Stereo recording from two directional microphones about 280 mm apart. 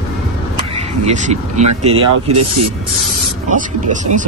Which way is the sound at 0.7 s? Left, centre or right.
Right.